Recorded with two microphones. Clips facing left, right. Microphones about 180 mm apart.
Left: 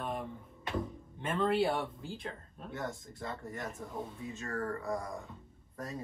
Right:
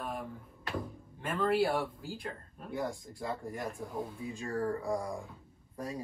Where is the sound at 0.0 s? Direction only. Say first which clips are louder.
Left 1 dB; centre (ahead or behind).